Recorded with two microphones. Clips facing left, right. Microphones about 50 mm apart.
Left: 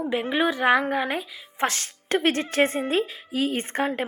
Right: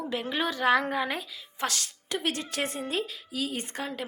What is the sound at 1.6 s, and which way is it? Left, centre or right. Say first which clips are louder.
A woman's voice: left 6 dB; left.